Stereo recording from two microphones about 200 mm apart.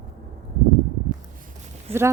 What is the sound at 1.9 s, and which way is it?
Speech, 30° right (ahead or behind).